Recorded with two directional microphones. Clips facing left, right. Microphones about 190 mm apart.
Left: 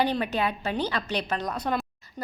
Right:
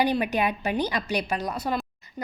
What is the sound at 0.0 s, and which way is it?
A woman's voice, 15° right (ahead or behind).